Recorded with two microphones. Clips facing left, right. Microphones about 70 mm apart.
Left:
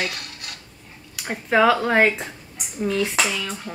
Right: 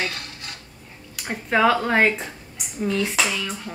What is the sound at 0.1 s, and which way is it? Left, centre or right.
Cutlery, right.